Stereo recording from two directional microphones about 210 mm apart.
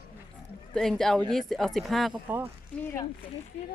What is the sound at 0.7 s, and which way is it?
A woman's voice, centre (ahead or behind).